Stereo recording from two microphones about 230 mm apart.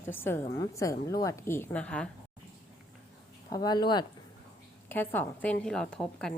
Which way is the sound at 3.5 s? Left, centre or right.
Centre.